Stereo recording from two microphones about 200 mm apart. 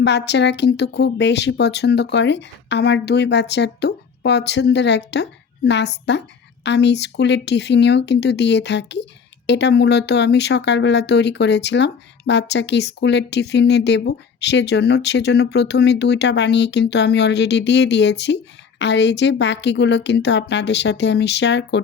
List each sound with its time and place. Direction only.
0.0 s speech: 60° left (ahead or behind)